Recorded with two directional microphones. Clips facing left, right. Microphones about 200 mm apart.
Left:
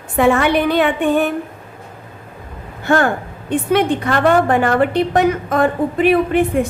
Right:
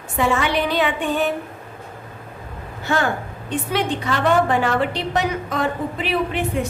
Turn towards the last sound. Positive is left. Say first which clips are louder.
# left 7 dB
turn(degrees=50)  # may be behind; listen again after turning